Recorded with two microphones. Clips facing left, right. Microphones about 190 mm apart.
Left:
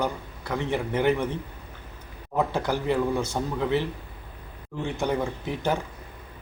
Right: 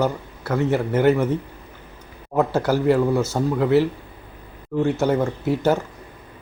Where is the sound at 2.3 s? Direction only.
5° right (ahead or behind).